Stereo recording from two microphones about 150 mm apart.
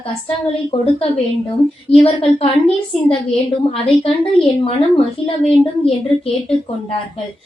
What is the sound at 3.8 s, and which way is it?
Speech, 40° left (ahead or behind).